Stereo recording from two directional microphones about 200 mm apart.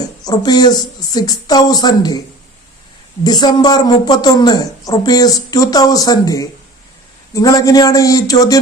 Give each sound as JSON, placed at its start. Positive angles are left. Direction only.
{"t": 0.3, "sound": "a woman's voice", "side_deg": 20}
{"t": 3.2, "sound": "a woman's voice", "side_deg": 20}
{"t": 7.3, "sound": "a sound", "side_deg": 15}